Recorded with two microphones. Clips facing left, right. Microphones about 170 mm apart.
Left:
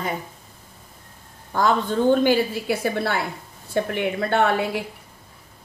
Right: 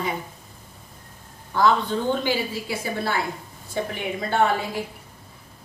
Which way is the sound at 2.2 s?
60° left (ahead or behind).